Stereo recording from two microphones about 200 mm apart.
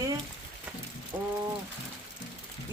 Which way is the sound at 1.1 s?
15° right (ahead or behind).